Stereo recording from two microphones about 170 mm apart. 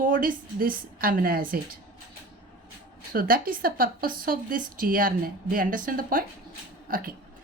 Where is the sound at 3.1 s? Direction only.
55° right (ahead or behind).